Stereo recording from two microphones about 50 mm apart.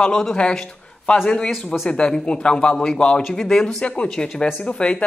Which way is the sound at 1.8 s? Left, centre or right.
Centre.